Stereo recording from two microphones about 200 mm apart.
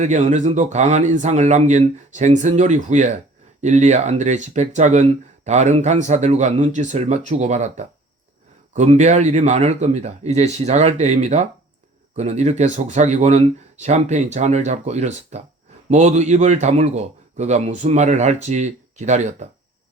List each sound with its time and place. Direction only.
0.0 s speech: 35° right (ahead or behind)